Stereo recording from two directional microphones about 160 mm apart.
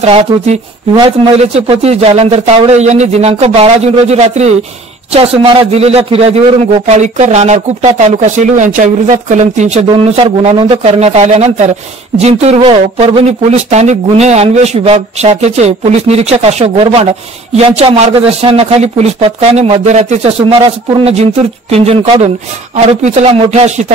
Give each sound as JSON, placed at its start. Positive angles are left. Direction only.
{"t": 0.0, "sound": "speech", "side_deg": -40}